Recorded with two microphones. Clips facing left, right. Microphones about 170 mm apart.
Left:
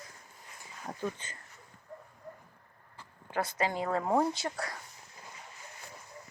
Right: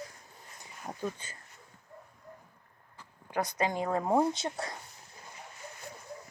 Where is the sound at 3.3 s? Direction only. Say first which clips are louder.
Right 1 dB; 15° right (ahead or behind).